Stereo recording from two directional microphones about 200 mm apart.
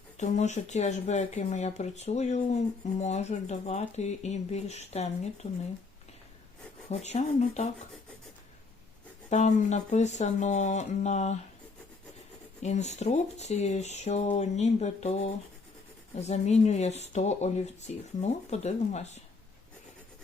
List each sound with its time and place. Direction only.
0.2 s speech: 35° left (ahead or behind)
6.9 s speech: 35° left (ahead or behind)
9.3 s speech: 35° left (ahead or behind)
12.6 s speech: 35° left (ahead or behind)